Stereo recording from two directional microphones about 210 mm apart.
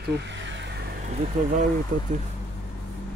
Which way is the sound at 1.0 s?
35° right (ahead or behind).